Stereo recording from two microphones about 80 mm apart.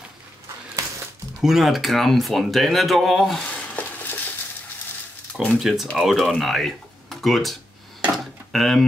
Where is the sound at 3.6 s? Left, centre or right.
Left.